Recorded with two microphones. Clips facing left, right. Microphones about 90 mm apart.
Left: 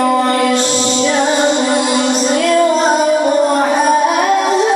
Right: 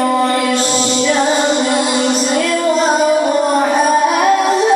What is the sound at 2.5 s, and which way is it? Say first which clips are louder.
Female singing: left 2 dB; 30° left (ahead or behind).